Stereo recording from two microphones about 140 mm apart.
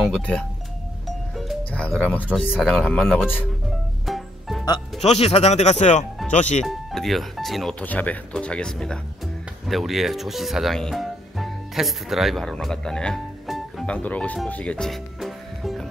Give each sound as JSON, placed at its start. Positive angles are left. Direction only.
{"t": 0.0, "sound": "speech", "side_deg": 5}
{"t": 1.0, "sound": "music", "side_deg": 0}
{"t": 1.6, "sound": "speech", "side_deg": 10}
{"t": 4.0, "sound": "music", "side_deg": 0}
{"t": 5.0, "sound": "speech", "side_deg": 45}
{"t": 6.6, "sound": "speech", "side_deg": 0}
{"t": 7.8, "sound": "speech", "side_deg": 10}